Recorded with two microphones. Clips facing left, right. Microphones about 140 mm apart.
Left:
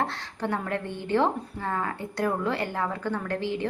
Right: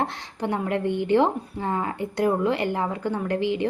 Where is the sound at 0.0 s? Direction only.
15° right (ahead or behind).